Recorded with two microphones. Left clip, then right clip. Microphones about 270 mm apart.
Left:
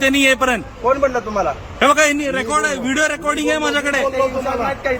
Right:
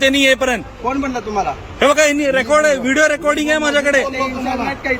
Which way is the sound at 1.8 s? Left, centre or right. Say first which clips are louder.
Right 1 dB; centre.